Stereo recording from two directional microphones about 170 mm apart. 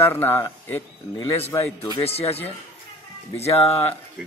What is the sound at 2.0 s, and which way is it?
Speech, 35° left (ahead or behind).